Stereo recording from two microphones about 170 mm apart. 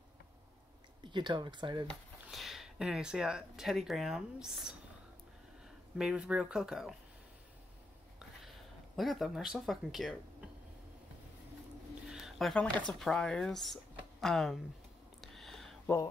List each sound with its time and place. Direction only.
1.0 s speech: 25° right (ahead or behind)
1.9 s speech: centre (ahead or behind)
5.9 s speech: 5° right (ahead or behind)
8.9 s speech: centre (ahead or behind)
12.1 s a sound: centre (ahead or behind)
12.8 s speech: 5° left (ahead or behind)
15.1 s a sound: centre (ahead or behind)